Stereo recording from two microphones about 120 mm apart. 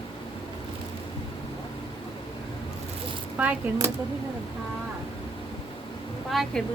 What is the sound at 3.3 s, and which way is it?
Speech, 15° right (ahead or behind).